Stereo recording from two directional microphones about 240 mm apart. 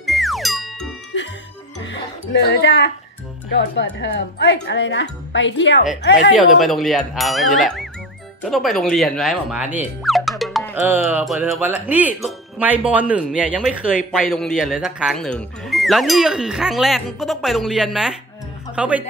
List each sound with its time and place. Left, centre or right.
0.0 s music: centre
1.1 s music: left
2.3 s speech: left
6.3 s speech: centre